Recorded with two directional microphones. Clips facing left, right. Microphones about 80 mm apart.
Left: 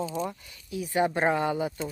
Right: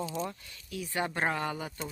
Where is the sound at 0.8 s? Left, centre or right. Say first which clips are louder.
Left 7 dB; centre.